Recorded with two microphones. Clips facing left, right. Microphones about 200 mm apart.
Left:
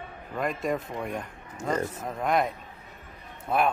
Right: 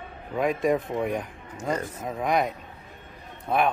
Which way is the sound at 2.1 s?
Centre (ahead or behind).